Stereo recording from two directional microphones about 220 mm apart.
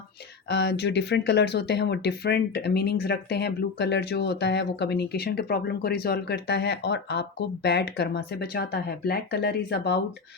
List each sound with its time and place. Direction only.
0.4 s speech: 50° left (ahead or behind)